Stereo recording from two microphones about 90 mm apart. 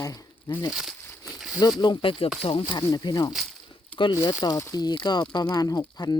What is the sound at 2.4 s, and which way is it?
Speech, 90° left.